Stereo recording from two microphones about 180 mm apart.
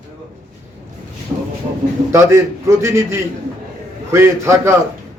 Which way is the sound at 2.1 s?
15° right (ahead or behind).